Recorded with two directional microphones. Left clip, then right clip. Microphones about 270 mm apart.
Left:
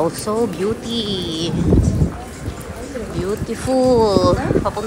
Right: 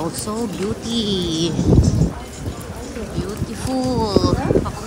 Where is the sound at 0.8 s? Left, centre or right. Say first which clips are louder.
Right 1 dB; centre.